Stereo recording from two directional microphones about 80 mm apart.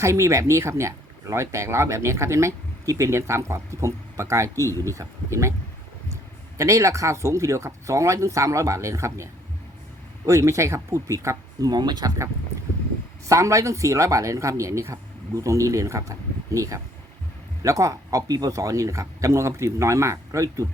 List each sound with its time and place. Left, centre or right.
0.0 s speech: right
6.6 s speech: right
11.7 s speech: right